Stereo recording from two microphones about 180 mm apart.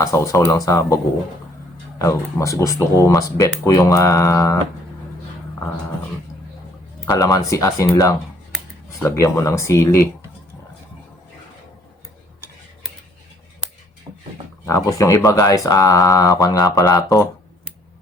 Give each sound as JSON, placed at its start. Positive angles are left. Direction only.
{"t": 0.0, "sound": "speech", "side_deg": 15}
{"t": 2.0, "sound": "speech", "side_deg": 15}
{"t": 7.0, "sound": "speech", "side_deg": 20}
{"t": 14.7, "sound": "speech", "side_deg": 15}